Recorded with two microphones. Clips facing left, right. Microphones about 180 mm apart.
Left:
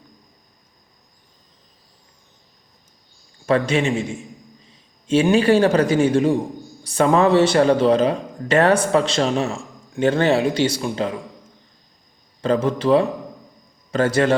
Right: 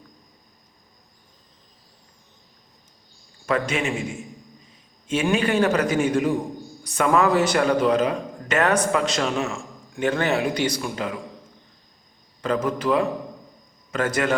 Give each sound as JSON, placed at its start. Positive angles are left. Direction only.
{"t": 3.4, "sound": "speech", "side_deg": 30}
{"t": 5.0, "sound": "a man's voice", "side_deg": 30}
{"t": 12.4, "sound": "a man's voice", "side_deg": 30}